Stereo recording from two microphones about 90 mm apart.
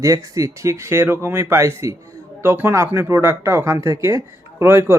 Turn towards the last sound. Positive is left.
turn(degrees=-25)  # may be behind; listen again after turning